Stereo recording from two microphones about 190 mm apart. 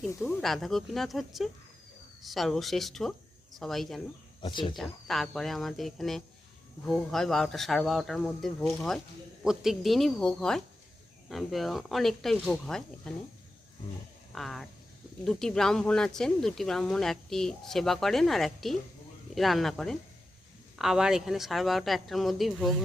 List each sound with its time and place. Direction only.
0.0 s speech: centre (ahead or behind)
4.4 s speech: 25° left (ahead or behind)
4.7 s speech: centre (ahead or behind)
14.3 s speech: centre (ahead or behind)